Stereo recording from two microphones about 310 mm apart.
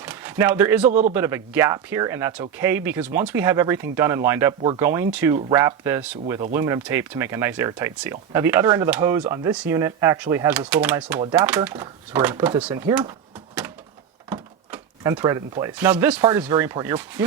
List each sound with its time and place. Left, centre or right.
0.0 s a sound: centre
0.9 s a man's voice: right
1.1 s speech: centre
14.7 s speech: centre